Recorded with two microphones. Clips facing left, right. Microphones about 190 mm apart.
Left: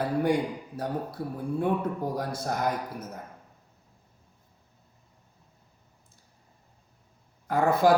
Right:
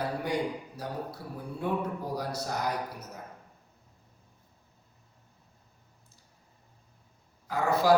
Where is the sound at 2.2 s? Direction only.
50° left (ahead or behind).